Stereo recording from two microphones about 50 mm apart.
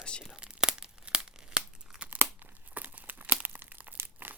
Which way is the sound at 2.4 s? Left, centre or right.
Right.